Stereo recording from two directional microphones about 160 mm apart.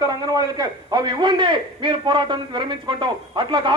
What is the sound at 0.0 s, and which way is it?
A man's voice, 25° right (ahead or behind).